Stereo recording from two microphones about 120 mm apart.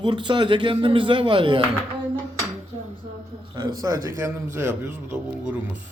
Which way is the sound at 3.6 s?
30° right (ahead or behind).